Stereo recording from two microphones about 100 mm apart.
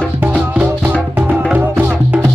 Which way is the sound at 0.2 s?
15° right (ahead or behind).